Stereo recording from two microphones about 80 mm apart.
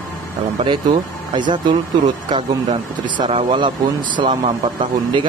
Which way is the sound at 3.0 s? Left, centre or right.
Right.